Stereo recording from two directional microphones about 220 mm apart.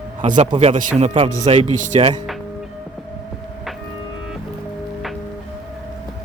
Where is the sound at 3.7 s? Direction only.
Centre (ahead or behind).